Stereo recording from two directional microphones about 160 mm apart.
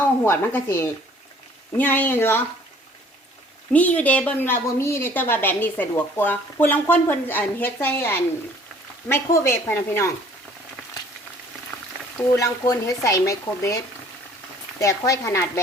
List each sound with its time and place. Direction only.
0.3 s a woman's voice: 15° left (ahead or behind)
3.7 s a woman's voice: 10° left (ahead or behind)
12.3 s speech: 20° left (ahead or behind)